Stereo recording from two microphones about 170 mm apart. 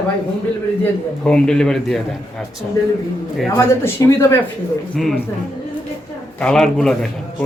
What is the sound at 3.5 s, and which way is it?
Speech, 15° left (ahead or behind).